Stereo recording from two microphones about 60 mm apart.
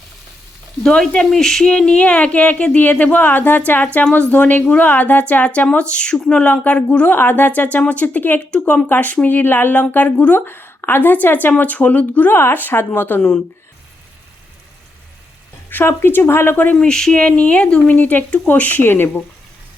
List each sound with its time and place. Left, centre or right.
0.8 s speech: centre; by 3.6 s left
3.8 s speech: centre
4.1 s speech: left
8.4 s speech: left
10.4 s speech: left
12.4 s speech: left
15.9 s speech: left
16.7 s speech: centre; by 19.2 s left